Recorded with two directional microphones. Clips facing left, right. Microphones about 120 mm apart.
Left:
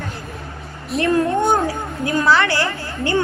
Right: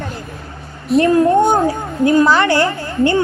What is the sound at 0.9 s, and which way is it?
Speech, centre (ahead or behind).